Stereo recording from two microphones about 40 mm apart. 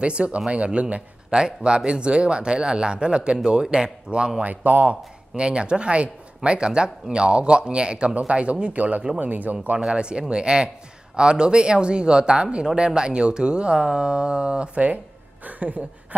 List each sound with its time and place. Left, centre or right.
0.0 s speech: right
4.4 s speech: right
4.8 s speech: right
9.8 s speech: right